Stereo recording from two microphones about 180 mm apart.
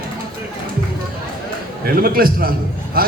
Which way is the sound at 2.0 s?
55° right (ahead or behind).